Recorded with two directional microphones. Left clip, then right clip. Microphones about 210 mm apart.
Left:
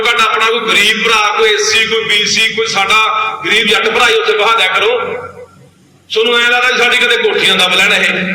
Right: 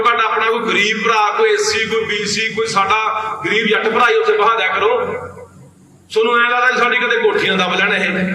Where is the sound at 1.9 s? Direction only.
55° right (ahead or behind).